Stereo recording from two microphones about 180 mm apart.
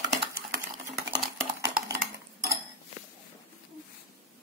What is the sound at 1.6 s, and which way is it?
Typing, 50° right (ahead or behind).